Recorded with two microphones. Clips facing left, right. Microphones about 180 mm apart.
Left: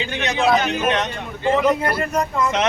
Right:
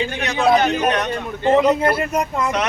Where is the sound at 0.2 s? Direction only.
20° left (ahead or behind).